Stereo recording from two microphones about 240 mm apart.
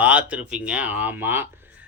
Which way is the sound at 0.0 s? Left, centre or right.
Centre.